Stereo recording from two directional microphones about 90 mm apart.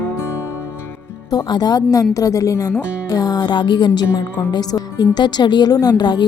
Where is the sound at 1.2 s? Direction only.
50° left (ahead or behind).